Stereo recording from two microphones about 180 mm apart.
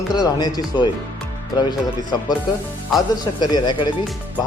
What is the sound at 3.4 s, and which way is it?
Speech, 25° left (ahead or behind).